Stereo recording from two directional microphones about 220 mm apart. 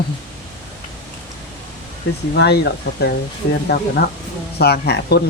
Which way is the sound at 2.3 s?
50° left (ahead or behind).